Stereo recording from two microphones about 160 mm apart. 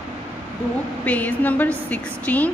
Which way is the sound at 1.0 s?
10° left (ahead or behind).